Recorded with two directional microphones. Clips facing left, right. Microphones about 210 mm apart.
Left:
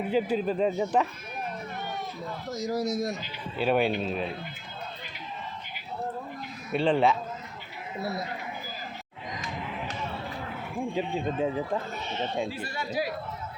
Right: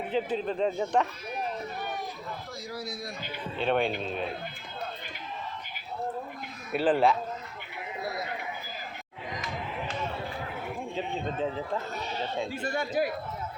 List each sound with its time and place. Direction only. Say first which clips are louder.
0.1 s speech: left 3 dB; 10° left (ahead or behind)
2.5 s a man's voice: left 13 dB; 45° left (ahead or behind)
3.6 s speech: left 3 dB; 5° left (ahead or behind)
6.7 s speech: even; centre (ahead or behind)
10.9 s speech: left 3 dB; 10° left (ahead or behind)
12.1 s speech: left 3 dB; 20° left (ahead or behind)
12.5 s speech: right 3 dB; 50° right (ahead or behind)